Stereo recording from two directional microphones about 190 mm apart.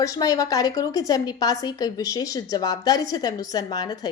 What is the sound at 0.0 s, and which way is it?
A woman's voice, 20° left (ahead or behind).